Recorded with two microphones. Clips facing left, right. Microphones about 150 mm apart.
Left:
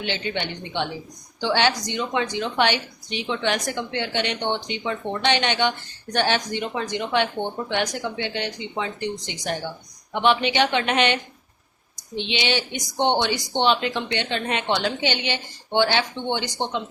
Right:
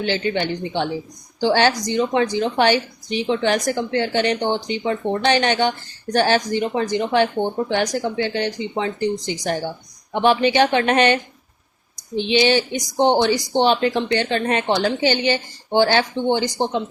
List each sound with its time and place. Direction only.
0.0 s speech: 40° right (ahead or behind)